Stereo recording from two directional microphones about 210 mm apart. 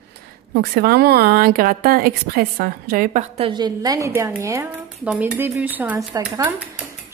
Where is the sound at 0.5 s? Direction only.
50° right (ahead or behind).